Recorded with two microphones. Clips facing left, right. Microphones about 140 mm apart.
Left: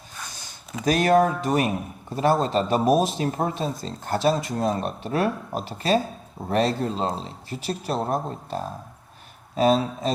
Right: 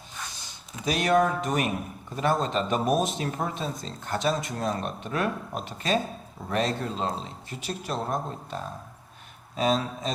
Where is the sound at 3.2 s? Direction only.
35° left (ahead or behind).